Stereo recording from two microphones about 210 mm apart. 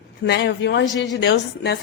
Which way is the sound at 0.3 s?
55° left (ahead or behind).